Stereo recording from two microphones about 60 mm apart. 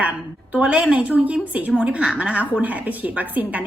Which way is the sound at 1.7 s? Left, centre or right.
Centre.